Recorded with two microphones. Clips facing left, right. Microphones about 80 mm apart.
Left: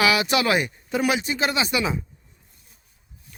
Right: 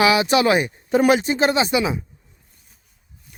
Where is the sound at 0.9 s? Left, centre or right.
Right.